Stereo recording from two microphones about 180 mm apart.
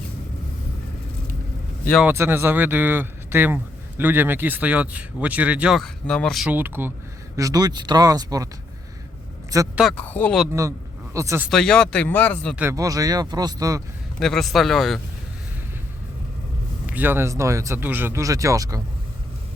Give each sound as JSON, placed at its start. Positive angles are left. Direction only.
{"t": 2.0, "sound": "speech", "side_deg": -15}
{"t": 9.5, "sound": "speech", "side_deg": -20}
{"t": 10.0, "sound": "speech", "side_deg": 10}
{"t": 10.5, "sound": "a man's voice", "side_deg": -15}
{"t": 11.4, "sound": "speech", "side_deg": 5}
{"t": 12.5, "sound": "speech", "side_deg": -15}
{"t": 14.2, "sound": "speech", "side_deg": 0}
{"t": 16.8, "sound": "speech", "side_deg": -10}